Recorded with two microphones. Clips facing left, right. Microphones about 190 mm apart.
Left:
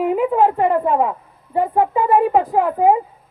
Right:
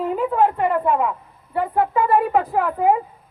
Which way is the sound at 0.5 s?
30° left (ahead or behind).